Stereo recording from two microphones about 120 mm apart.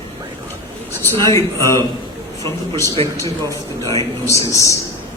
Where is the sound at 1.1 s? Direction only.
25° left (ahead or behind).